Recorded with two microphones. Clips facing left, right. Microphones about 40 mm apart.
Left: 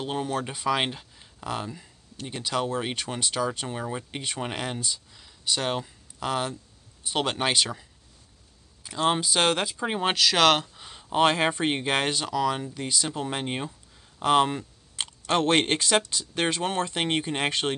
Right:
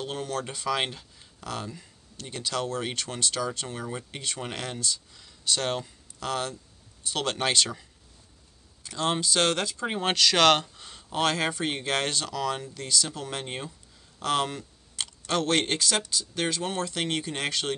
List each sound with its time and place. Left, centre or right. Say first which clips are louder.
0.0 s speech: left 3 dB; centre
8.8 s speech: left 3 dB; centre